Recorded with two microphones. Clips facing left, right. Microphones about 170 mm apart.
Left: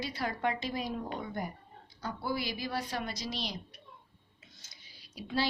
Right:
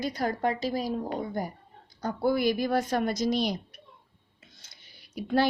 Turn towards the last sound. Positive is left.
turn(degrees=-55)  # may be behind; listen again after turning